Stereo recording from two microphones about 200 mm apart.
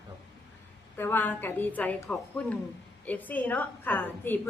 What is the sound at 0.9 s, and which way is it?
A woman's voice, 10° left (ahead or behind).